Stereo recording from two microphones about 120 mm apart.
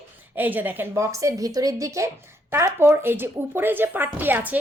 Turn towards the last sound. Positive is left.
turn(degrees=-15)  # may be behind; listen again after turning